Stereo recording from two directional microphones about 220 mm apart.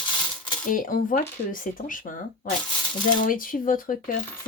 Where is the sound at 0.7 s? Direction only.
40° left (ahead or behind).